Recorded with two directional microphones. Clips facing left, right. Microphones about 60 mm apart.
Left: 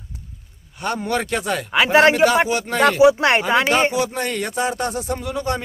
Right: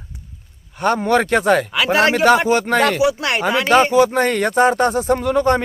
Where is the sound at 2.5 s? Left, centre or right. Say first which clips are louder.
Right 6 dB; right.